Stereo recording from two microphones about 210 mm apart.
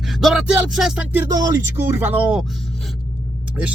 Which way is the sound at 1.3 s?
15° right (ahead or behind).